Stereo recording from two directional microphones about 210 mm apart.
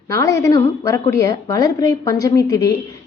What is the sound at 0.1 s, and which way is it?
A woman's voice, 15° left (ahead or behind).